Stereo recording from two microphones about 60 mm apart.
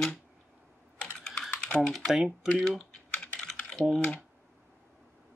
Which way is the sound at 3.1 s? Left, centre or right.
Centre.